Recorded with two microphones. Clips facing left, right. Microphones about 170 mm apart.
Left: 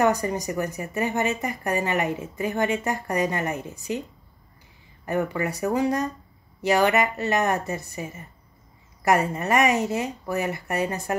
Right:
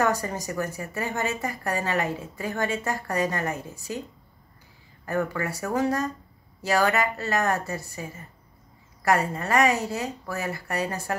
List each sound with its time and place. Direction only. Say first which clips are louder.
0.0 s speech: left 3 dB; 20° left (ahead or behind)
5.0 s speech: left 2 dB; 20° left (ahead or behind)